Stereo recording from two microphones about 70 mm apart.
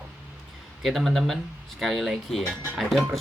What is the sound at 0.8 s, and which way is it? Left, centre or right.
Speech, centre.